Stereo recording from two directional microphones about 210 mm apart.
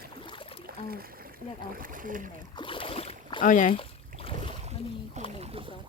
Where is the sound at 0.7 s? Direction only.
45° right (ahead or behind).